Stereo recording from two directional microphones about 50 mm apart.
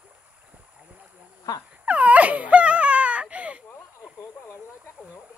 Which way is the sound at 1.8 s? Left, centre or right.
Right.